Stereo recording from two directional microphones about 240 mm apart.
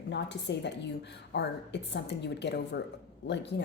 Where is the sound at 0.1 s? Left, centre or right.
Left.